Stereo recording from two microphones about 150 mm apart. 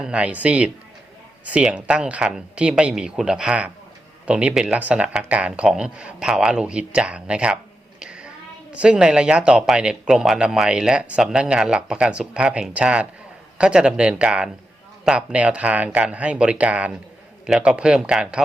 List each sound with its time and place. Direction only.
0.0 s speech: 10° right (ahead or behind)